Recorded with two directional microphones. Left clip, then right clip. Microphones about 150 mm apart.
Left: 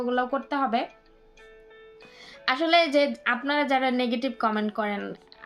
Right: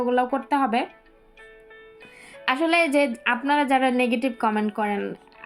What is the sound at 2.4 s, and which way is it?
A woman's voice, 20° right (ahead or behind).